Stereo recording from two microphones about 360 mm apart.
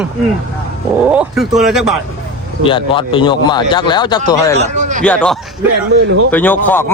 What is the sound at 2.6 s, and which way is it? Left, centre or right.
A man's voice, centre.